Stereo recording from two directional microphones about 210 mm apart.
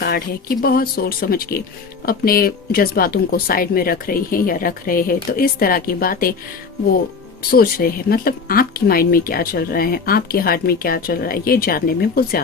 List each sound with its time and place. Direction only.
0.0 s speech: 50° left (ahead or behind)
7.5 s speech: 45° left (ahead or behind)